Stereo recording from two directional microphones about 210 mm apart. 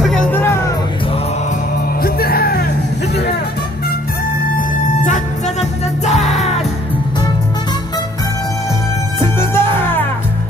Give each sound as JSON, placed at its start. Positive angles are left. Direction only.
{"t": 0.0, "sound": "music", "side_deg": 5}
{"t": 2.0, "sound": "music", "side_deg": 45}
{"t": 4.6, "sound": "music", "side_deg": 35}
{"t": 9.2, "sound": "music", "side_deg": 10}